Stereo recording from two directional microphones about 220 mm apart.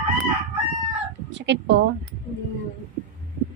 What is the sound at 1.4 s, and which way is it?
Speech, 55° right (ahead or behind).